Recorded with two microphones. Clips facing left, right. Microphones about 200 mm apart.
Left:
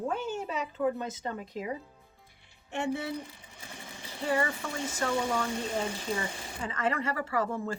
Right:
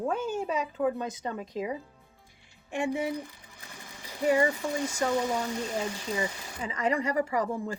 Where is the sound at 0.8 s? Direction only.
20° right (ahead or behind).